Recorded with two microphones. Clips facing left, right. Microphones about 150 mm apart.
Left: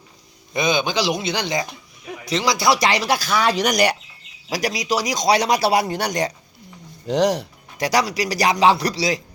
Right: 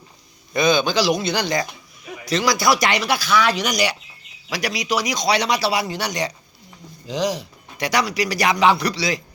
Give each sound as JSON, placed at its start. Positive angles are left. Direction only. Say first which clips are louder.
{"t": 0.5, "sound": "a man's voice", "louder": "right 2 dB", "side_deg": 20}
{"t": 4.4, "sound": "speech", "louder": "left 2 dB", "side_deg": 40}
{"t": 7.1, "sound": "speech", "louder": "left 5 dB", "side_deg": 65}
{"t": 7.8, "sound": "speech", "louder": "left 1 dB", "side_deg": 40}